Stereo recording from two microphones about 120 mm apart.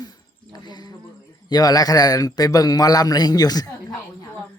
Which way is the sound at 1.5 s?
35° left (ahead or behind).